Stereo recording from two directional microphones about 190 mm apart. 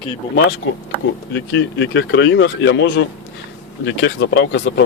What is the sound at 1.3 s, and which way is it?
Speech, 70° left (ahead or behind).